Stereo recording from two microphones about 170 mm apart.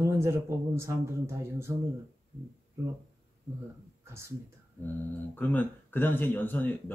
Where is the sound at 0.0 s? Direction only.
15° right (ahead or behind).